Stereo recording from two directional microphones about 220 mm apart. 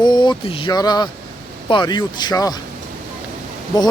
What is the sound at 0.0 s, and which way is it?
A man's voice, 20° left (ahead or behind).